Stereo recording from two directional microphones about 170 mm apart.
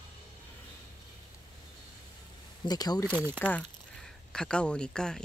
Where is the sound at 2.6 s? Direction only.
25° left (ahead or behind).